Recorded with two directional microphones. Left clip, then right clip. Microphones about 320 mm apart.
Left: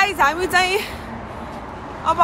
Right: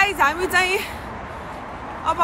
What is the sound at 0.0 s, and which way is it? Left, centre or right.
Speech, centre.